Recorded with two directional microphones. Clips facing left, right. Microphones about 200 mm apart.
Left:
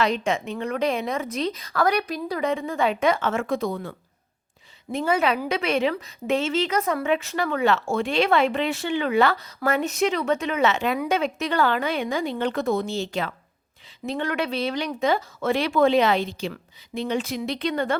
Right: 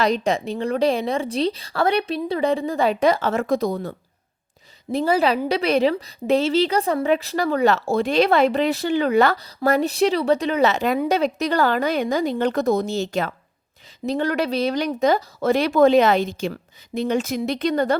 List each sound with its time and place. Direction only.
0.0 s a woman's voice: 35° right (ahead or behind)